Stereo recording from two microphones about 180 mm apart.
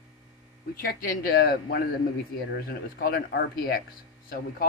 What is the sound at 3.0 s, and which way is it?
Speech, 55° left (ahead or behind).